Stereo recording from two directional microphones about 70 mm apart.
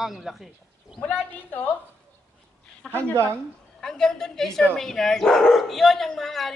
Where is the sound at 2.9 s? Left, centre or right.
Right.